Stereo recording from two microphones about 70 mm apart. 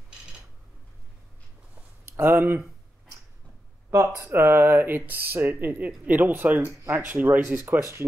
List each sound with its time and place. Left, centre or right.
2.0 s speech: right
3.9 s speech: right